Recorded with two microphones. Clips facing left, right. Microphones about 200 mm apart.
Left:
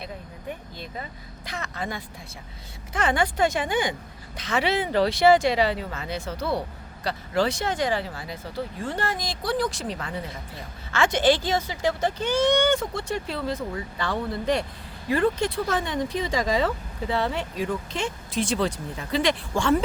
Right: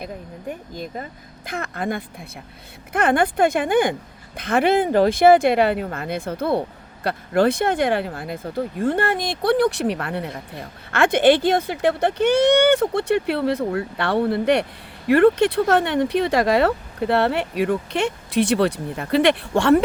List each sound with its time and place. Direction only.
0.0 s speech: 45° right (ahead or behind); by 19.8 s 65° right (ahead or behind)